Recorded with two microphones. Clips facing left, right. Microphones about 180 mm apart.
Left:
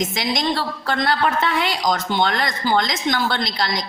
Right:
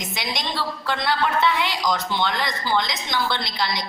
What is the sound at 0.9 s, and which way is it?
Speech, 45° left (ahead or behind).